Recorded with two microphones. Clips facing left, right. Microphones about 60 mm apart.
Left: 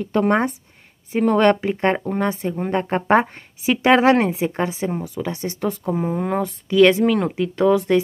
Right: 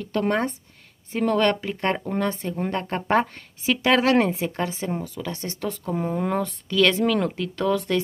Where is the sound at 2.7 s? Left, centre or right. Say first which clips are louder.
Left 5 dB; left; by 6.5 s centre.